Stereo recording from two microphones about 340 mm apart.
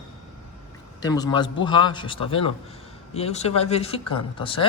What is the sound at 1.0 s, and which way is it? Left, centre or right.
Speech, centre.